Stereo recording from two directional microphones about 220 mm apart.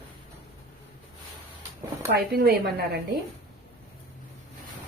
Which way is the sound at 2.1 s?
45° right (ahead or behind).